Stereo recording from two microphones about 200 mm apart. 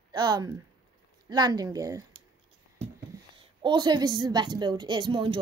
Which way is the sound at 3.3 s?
25° right (ahead or behind).